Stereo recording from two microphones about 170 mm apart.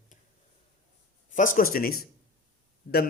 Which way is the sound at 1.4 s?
55° left (ahead or behind).